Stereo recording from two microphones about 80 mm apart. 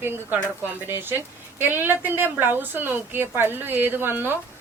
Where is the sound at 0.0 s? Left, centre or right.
Right.